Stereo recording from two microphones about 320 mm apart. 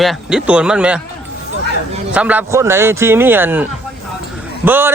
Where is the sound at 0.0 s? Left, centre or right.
Centre.